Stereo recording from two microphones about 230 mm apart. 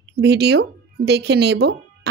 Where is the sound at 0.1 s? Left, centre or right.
Right.